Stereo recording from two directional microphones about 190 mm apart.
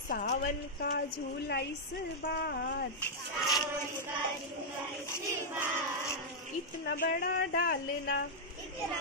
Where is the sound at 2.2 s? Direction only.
60° left (ahead or behind).